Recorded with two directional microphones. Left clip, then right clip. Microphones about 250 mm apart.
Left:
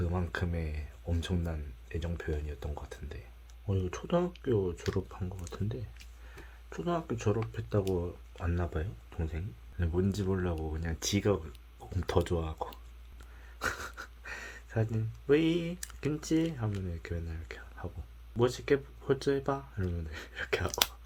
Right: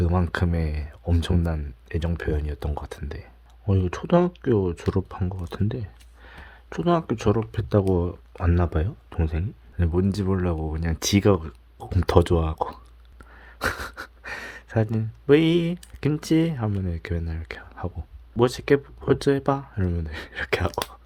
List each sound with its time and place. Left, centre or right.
0.0 s speech: right